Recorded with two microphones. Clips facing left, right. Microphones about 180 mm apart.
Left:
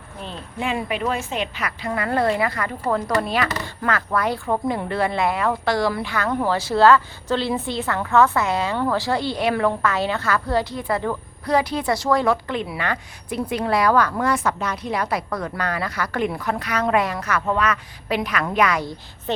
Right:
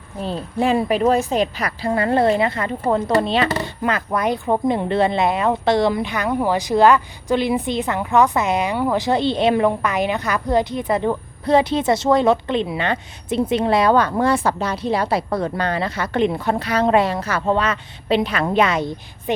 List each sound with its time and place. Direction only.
0.2 s a woman's voice: 40° right (ahead or behind)